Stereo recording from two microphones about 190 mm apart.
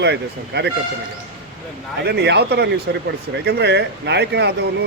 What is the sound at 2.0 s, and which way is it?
A man's voice, 60° right (ahead or behind).